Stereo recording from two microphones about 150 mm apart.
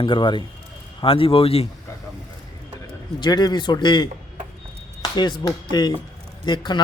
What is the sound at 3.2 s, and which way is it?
Speech, 30° left (ahead or behind).